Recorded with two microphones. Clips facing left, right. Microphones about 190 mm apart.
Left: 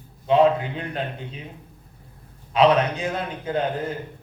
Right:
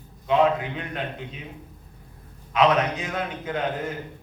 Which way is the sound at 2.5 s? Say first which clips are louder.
Left 3 dB; 30° left (ahead or behind).